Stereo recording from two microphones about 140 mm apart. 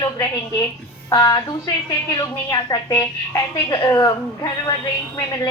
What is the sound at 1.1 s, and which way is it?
A woman's voice, 25° left (ahead or behind).